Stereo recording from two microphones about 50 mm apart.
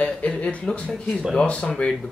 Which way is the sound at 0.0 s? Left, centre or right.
Left.